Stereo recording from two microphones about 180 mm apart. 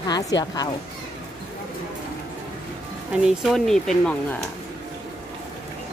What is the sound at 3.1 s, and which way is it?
Speech, 5° right (ahead or behind).